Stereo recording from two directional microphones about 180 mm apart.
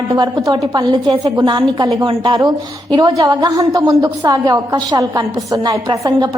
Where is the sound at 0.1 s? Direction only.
20° right (ahead or behind).